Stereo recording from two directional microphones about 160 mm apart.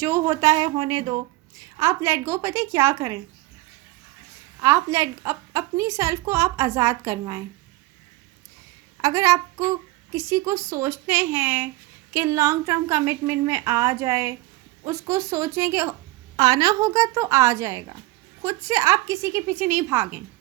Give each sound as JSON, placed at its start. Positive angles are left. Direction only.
{"t": 0.0, "sound": "a woman's voice", "side_deg": -20}
{"t": 4.6, "sound": "a woman's voice", "side_deg": -20}
{"t": 9.0, "sound": "a woman's voice", "side_deg": -20}